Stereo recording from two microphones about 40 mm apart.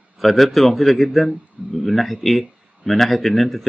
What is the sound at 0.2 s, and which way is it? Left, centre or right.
Speech, centre.